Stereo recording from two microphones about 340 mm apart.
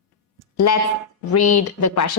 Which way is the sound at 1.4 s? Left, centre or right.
Left.